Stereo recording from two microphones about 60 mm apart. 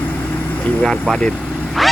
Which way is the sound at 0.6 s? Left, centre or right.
Left.